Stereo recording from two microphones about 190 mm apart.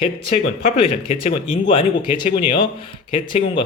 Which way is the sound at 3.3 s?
30° left (ahead or behind).